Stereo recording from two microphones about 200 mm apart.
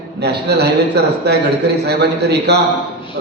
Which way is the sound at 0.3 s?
55° right (ahead or behind).